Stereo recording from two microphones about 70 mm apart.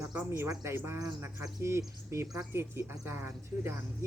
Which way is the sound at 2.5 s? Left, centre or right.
Right.